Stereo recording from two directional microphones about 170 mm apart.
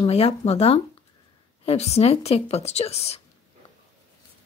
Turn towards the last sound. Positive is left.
turn(degrees=35)  # may be behind; listen again after turning